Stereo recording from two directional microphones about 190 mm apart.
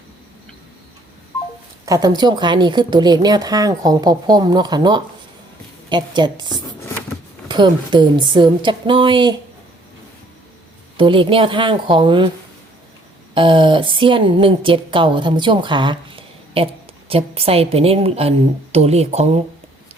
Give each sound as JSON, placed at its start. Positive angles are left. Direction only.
{"t": 1.8, "sound": "a woman's voice", "side_deg": -20}
{"t": 10.9, "sound": "a woman's voice", "side_deg": -25}
{"t": 13.3, "sound": "a woman's voice", "side_deg": -25}